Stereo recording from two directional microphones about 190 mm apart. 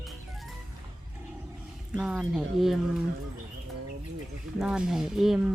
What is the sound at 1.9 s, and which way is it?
Speech, centre (ahead or behind).